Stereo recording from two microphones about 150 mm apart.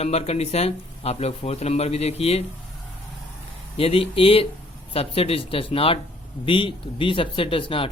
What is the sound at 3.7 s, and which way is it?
Speech, 40° left (ahead or behind).